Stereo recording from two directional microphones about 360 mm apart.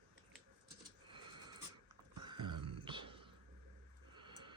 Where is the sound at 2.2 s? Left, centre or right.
Right.